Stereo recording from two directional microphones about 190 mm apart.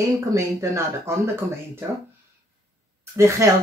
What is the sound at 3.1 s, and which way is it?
Speech, 15° right (ahead or behind).